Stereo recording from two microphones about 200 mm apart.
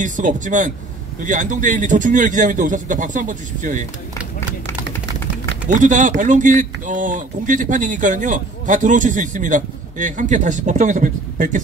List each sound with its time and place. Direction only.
0.0 s speech: 40° right (ahead or behind)
5.7 s speech: 40° right (ahead or behind)